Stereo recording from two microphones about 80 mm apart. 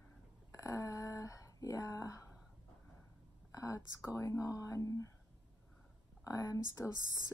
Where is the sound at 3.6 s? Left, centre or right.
Left.